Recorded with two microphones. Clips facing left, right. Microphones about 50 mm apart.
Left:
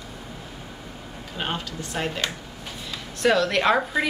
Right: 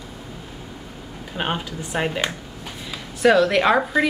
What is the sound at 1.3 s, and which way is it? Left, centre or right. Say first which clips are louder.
Speech: right 4 dB; centre.